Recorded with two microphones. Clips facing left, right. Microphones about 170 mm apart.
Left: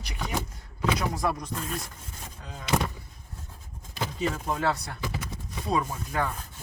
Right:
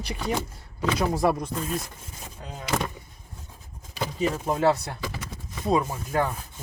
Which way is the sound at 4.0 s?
10° right (ahead or behind).